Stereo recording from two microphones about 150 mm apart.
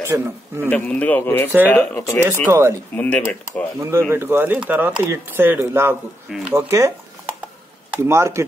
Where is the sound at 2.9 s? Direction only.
10° left (ahead or behind).